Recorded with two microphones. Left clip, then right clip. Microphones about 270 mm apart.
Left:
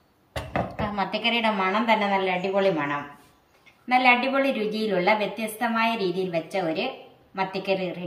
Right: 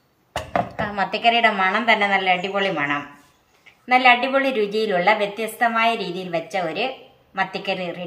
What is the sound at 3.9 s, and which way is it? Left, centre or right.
A woman's voice, centre.